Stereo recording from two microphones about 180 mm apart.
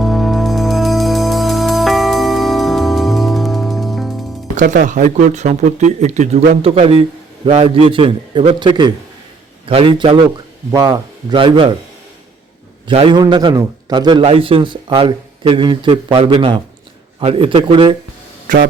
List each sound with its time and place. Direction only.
0.0 s music: centre (ahead or behind)
4.5 s a man's voice: 45° right (ahead or behind)
10.7 s a man's voice: 20° right (ahead or behind)
12.9 s a man's voice: 30° right (ahead or behind)
18.5 s speech: 50° right (ahead or behind)